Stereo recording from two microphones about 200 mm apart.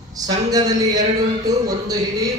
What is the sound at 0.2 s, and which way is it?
Speech, 15° right (ahead or behind).